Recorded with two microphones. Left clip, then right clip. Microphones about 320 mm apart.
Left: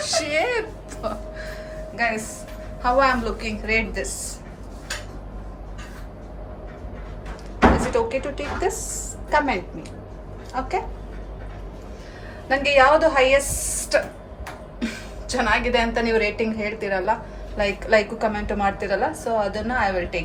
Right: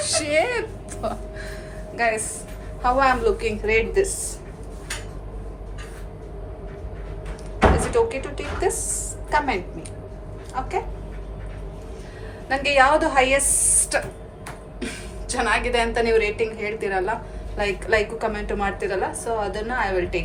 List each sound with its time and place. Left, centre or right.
0.0 s a sound: centre
2.0 s a woman's voice: centre
7.9 s a woman's voice: centre
12.5 s a woman's voice: centre